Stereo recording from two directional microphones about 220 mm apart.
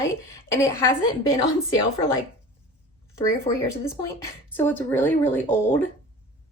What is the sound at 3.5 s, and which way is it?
Speech, 30° left (ahead or behind).